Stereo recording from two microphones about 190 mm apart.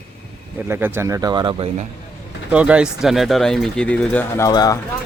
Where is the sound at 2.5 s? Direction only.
5° right (ahead or behind); by 4.7 s 20° left (ahead or behind).